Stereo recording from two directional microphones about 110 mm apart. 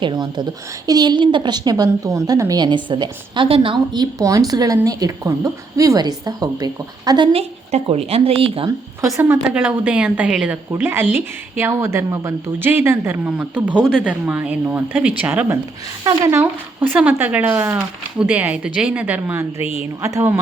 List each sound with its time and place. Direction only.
0.0 s a woman's voice: 40° right (ahead or behind)
7.3 s speech: 65° right (ahead or behind)
9.0 s a woman's voice: 25° right (ahead or behind)
16.0 s speech: 30° right (ahead or behind)
16.4 s a woman's voice: 10° right (ahead or behind)